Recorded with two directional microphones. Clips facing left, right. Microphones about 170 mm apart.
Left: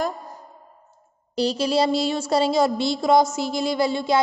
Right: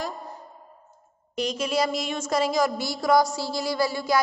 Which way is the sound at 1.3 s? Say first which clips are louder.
Left 5 dB; 35° left (ahead or behind).